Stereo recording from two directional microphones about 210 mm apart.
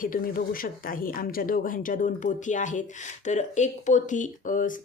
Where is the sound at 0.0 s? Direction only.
40° left (ahead or behind).